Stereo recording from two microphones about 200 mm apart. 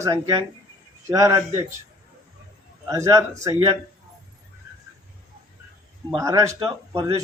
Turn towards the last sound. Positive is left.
turn(degrees=-15)  # may be behind; listen again after turning